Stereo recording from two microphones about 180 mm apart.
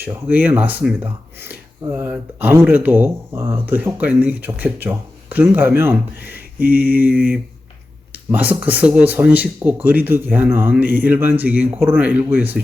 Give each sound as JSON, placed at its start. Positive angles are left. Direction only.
{"t": 0.0, "sound": "speech", "side_deg": -10}
{"t": 8.1, "sound": "speech", "side_deg": -10}